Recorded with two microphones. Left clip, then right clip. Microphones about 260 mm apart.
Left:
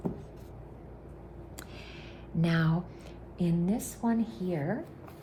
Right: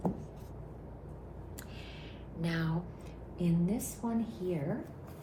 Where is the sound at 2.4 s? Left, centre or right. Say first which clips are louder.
Left 6 dB; left.